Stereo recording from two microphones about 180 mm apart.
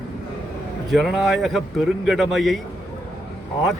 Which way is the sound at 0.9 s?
Centre (ahead or behind).